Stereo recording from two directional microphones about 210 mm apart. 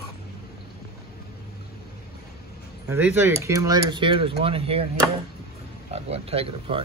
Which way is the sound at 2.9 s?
15° right (ahead or behind).